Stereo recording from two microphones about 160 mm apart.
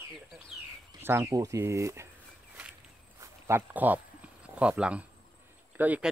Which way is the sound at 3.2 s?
15° right (ahead or behind).